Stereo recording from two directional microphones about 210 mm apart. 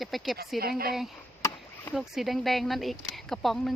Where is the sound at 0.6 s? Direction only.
45° right (ahead or behind).